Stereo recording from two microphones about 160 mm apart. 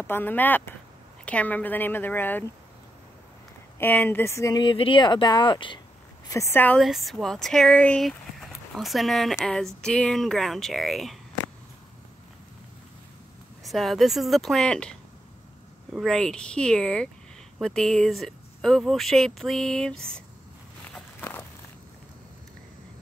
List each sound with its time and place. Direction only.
0.0 s a woman's voice: 10° left (ahead or behind)
3.8 s speech: 10° left (ahead or behind); by 5.8 s 30° left (ahead or behind)
6.2 s a woman's voice: 20° left (ahead or behind)
6.8 s speech: centre (ahead or behind)
13.7 s speech: centre (ahead or behind)
20.9 s walk: 10° left (ahead or behind)